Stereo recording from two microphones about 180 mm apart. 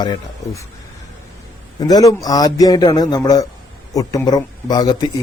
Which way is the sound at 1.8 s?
20° left (ahead or behind).